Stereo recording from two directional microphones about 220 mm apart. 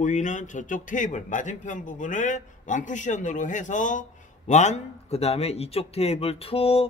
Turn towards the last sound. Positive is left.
turn(degrees=25)  # may be behind; listen again after turning